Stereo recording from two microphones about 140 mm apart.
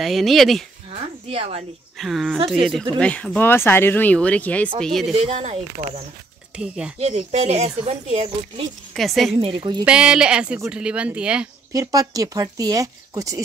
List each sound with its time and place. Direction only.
0.0 s speech: centre (ahead or behind)
1.3 s speech: 45° right (ahead or behind)
2.0 s speech: centre (ahead or behind)
5.1 s speech: 45° right (ahead or behind)
6.5 s speech: 5° right (ahead or behind)
7.0 s speech: 45° right (ahead or behind)
8.9 s speech: centre (ahead or behind)
9.4 s a woman's voice: 35° right (ahead or behind)
9.8 s speech: 5° right (ahead or behind)
11.7 s speech: 25° right (ahead or behind)